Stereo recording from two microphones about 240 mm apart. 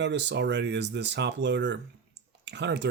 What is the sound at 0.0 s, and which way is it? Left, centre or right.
Speech, right.